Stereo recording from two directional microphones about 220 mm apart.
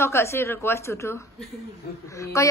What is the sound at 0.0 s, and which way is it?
A woman's voice, 10° left (ahead or behind).